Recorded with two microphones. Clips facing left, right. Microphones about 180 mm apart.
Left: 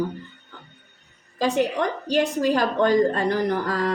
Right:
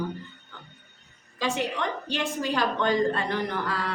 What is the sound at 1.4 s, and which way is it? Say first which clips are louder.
A woman's voice: left 6 dB; 40° left (ahead or behind).